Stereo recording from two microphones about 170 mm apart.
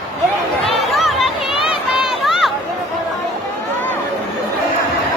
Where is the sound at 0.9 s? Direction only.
Centre (ahead or behind).